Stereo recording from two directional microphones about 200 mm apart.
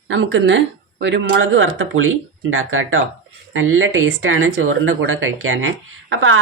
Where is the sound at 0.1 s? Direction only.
70° right (ahead or behind).